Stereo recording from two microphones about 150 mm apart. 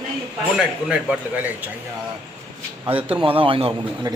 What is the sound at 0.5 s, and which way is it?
A man's voice, 5° right (ahead or behind).